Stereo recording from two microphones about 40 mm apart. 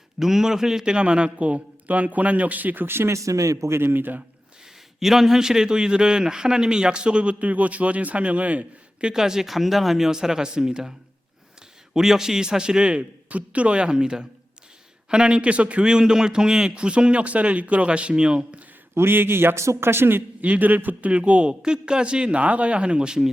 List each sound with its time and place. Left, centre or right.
0.2 s speech: centre
0.9 s speech: right
2.8 s a man's voice: right
4.9 s a man's voice: centre; by 7.3 s right
7.3 s speech: right
9.1 s speech: centre
11.9 s a man's voice: centre; by 15.8 s right
15.8 s a man's voice: centre
18.9 s a man's voice: right
20.4 s a man's voice: right
21.1 s a man's voice: right